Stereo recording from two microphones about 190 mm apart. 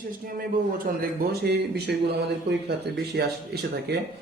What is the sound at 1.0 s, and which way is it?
A man's voice, 60° right (ahead or behind).